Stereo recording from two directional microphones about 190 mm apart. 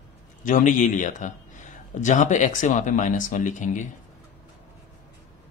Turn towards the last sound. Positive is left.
turn(degrees=40)  # may be behind; listen again after turning